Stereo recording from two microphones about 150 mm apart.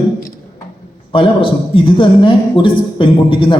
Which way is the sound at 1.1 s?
35° left (ahead or behind).